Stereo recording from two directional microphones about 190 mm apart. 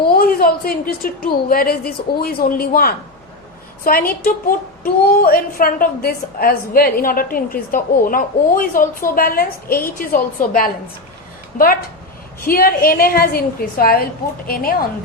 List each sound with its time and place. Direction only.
0.1 s a woman's voice: 50° left (ahead or behind)